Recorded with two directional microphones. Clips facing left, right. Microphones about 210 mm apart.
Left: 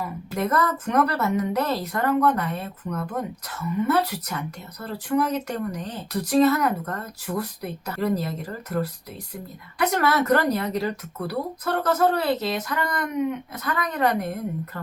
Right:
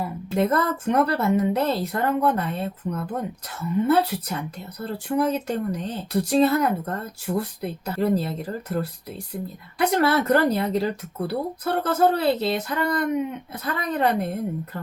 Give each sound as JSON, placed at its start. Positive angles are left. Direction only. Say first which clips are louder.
{"t": 0.0, "sound": "speech", "louder": "right 4 dB", "side_deg": -30}